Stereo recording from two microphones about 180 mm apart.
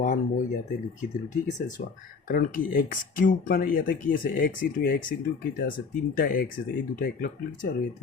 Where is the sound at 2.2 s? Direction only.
50° left (ahead or behind).